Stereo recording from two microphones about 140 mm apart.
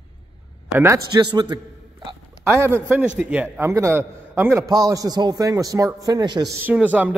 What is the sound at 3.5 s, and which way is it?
A man's voice, 20° right (ahead or behind).